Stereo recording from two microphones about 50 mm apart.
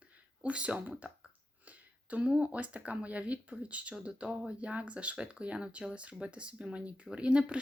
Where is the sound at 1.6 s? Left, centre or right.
Right.